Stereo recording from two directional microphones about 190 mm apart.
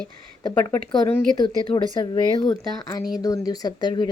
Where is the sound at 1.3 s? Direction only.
25° left (ahead or behind).